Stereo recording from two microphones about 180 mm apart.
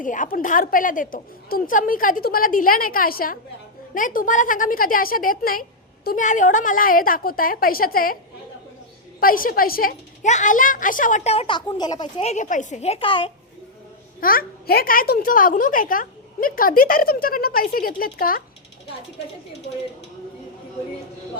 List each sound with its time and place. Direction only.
0.0 s a woman's voice: 45° left (ahead or behind)
9.2 s a woman's voice: 50° left (ahead or behind); by 12.0 s 25° left (ahead or behind)
12.2 s a woman's voice: 40° left (ahead or behind)
14.2 s a woman's voice: 55° left (ahead or behind)